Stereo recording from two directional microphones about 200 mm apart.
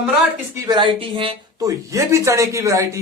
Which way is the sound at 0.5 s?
20° right (ahead or behind).